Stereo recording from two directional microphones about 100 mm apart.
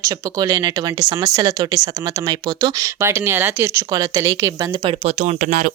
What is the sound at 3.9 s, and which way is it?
Speech, 35° right (ahead or behind).